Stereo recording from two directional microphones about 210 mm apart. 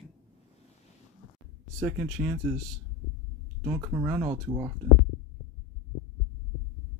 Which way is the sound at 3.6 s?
15° right (ahead or behind).